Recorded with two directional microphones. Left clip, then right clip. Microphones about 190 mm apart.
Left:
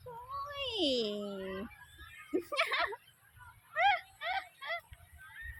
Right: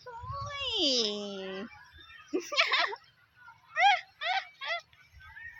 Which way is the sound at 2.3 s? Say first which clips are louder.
Right 5 dB; 10° right (ahead or behind).